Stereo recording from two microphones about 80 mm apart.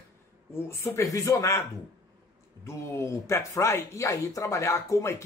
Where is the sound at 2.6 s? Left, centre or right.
Left.